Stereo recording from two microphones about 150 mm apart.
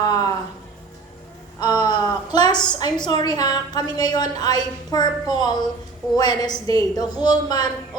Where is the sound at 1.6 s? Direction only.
30° left (ahead or behind).